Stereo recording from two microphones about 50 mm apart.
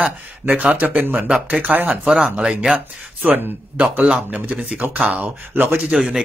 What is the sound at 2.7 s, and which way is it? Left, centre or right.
Speech, right.